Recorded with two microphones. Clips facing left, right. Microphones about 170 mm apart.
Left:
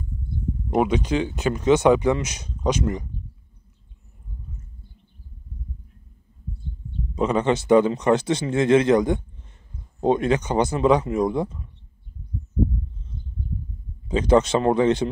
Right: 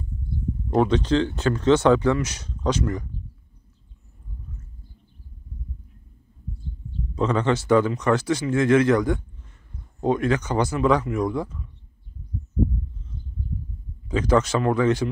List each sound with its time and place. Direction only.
0.7 s speech: 15° left (ahead or behind)
7.2 s speech: 15° left (ahead or behind)
14.0 s speech: 20° left (ahead or behind)